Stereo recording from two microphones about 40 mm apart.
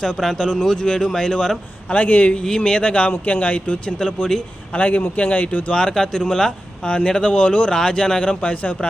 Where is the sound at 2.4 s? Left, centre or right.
Left.